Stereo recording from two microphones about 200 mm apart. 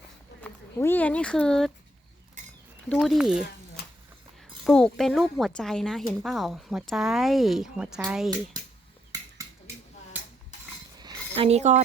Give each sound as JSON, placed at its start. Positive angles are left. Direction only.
{"t": 0.4, "sound": "speech", "side_deg": 10}
{"t": 2.4, "sound": "a sound", "side_deg": -35}
{"t": 2.9, "sound": "speech", "side_deg": 0}
{"t": 4.6, "sound": "speech", "side_deg": 0}
{"t": 9.1, "sound": "dishes", "side_deg": -20}
{"t": 11.0, "sound": "a sound", "side_deg": -20}
{"t": 11.4, "sound": "speech", "side_deg": -35}